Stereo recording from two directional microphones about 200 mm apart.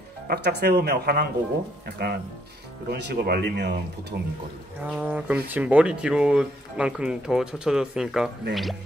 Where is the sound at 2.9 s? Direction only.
50° right (ahead or behind).